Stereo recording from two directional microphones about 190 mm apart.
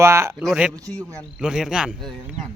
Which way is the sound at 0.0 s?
15° right (ahead or behind).